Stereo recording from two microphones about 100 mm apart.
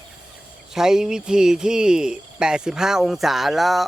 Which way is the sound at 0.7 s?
5° right (ahead or behind).